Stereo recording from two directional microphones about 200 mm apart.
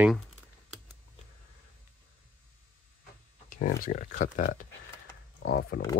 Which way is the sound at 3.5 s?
45° left (ahead or behind).